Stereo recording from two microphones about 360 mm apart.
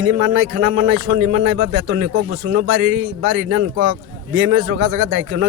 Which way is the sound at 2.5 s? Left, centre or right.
Right.